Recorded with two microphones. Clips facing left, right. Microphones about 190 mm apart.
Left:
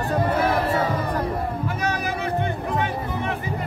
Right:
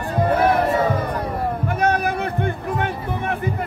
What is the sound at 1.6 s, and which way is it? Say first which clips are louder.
Music: right 6 dB; 55° right (ahead or behind).